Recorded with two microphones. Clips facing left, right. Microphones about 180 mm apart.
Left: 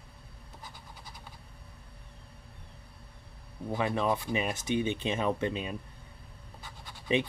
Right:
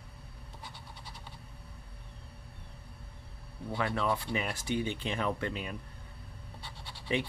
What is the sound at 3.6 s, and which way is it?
Speech, 15° left (ahead or behind).